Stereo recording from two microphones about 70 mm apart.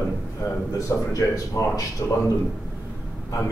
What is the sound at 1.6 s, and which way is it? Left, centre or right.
Speech, left.